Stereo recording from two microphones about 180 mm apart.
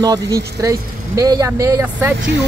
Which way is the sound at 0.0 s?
20° right (ahead or behind).